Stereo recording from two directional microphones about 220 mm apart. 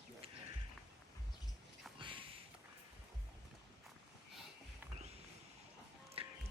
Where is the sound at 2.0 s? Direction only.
20° right (ahead or behind).